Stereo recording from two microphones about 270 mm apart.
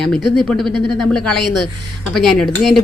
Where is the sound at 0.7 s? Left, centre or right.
Left.